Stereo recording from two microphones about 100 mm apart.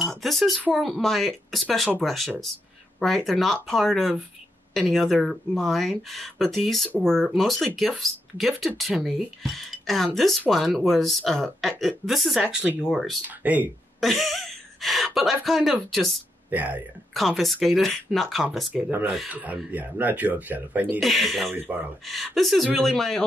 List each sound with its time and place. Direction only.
0.2 s speech: centre (ahead or behind)
13.4 s speech: 15° right (ahead or behind)
14.0 s speech: centre (ahead or behind)
16.4 s speech: 15° right (ahead or behind)
17.1 s speech: centre (ahead or behind)
18.7 s speech: 15° right (ahead or behind)
19.0 s speech: 5° right (ahead or behind)
19.3 s speech: 15° right (ahead or behind)
21.0 s speech: centre (ahead or behind)
21.5 s speech: 15° right (ahead or behind)
22.1 s speech: centre (ahead or behind)